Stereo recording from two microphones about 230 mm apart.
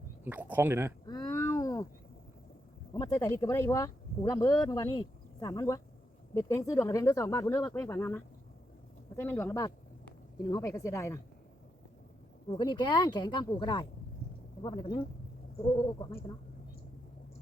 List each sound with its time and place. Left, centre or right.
0.3 s speech: centre
1.0 s a sound: centre
2.9 s speech: centre
12.5 s speech: centre